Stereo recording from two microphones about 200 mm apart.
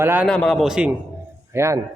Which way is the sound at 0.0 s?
10° right (ahead or behind).